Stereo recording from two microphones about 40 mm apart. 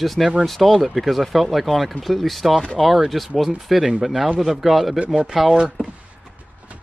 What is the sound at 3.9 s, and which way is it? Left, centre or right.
Speech, centre.